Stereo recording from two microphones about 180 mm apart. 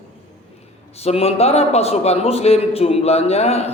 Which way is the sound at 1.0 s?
35° left (ahead or behind).